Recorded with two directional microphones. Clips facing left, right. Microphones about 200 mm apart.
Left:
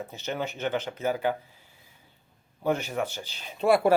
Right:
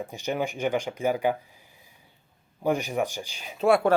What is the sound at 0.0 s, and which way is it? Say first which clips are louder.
Speech: right 3 dB; 15° right (ahead or behind).